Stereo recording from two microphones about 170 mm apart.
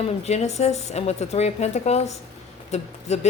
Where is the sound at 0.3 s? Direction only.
40° left (ahead or behind).